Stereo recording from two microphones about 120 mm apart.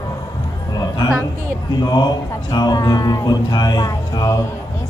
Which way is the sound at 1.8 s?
35° left (ahead or behind).